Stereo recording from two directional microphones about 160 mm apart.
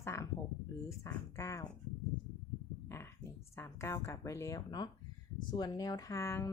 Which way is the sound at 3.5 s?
15° left (ahead or behind).